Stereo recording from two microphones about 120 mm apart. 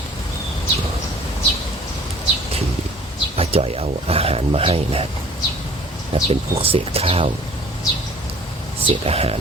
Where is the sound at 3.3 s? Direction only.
55° right (ahead or behind).